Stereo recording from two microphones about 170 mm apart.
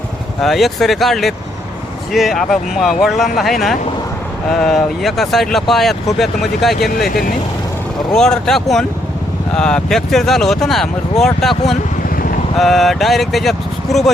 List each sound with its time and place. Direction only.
0.4 s speech: centre (ahead or behind)
4.6 s speech: centre (ahead or behind)
8.1 s speech: 5° left (ahead or behind)
12.0 s vehicle: 55° left (ahead or behind)
12.5 s speech: centre (ahead or behind)